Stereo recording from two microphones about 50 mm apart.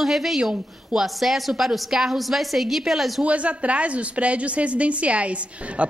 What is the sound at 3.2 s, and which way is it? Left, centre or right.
A woman's voice, right.